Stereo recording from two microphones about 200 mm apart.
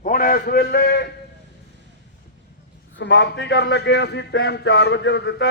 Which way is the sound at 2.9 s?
60° left (ahead or behind).